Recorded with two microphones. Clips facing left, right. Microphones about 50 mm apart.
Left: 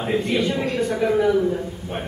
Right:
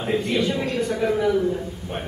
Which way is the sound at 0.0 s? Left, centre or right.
Centre.